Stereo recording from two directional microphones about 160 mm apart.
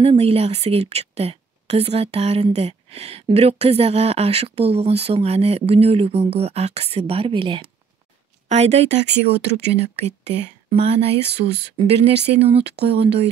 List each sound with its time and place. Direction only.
0.0 s a woman's voice: 40° right (ahead or behind)
8.5 s a woman's voice: 45° right (ahead or behind)